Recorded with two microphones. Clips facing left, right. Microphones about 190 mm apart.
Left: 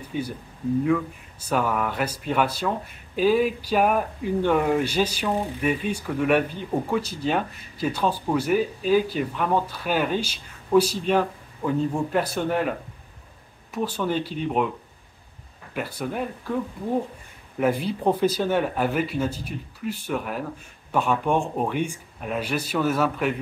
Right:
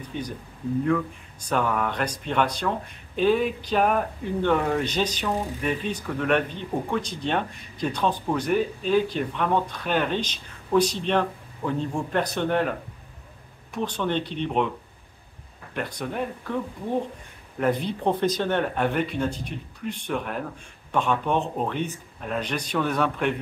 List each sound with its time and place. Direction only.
0.1 s speech: 5° left (ahead or behind)
1.4 s speech: 5° left (ahead or behind)
13.7 s speech: 5° left (ahead or behind)
15.7 s speech: 5° left (ahead or behind)
17.6 s speech: 5° left (ahead or behind)